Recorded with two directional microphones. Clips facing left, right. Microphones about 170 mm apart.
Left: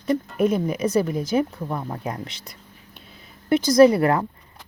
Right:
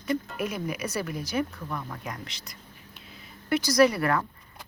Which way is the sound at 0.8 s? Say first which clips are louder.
Left 10 dB; 25° left (ahead or behind).